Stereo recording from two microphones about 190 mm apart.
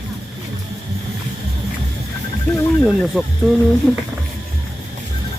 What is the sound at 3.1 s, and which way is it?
Speech, centre (ahead or behind).